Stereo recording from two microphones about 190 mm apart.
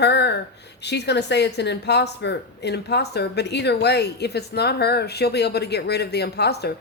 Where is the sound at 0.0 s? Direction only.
60° left (ahead or behind).